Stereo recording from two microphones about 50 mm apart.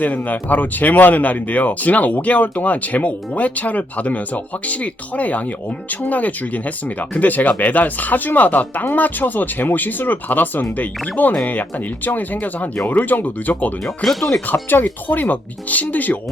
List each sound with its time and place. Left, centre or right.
0.0 s speech: left
13.8 s speech: centre
14.5 s speech: left